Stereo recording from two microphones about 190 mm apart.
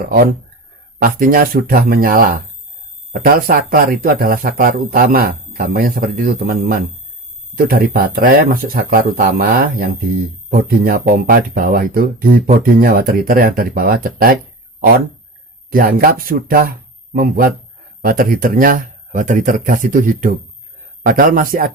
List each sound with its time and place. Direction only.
0.1 s speech: 50° right (ahead or behind)
15.7 s speech: 50° right (ahead or behind)